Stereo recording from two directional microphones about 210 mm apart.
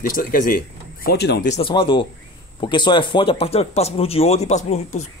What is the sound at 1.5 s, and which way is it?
Speech, 25° left (ahead or behind).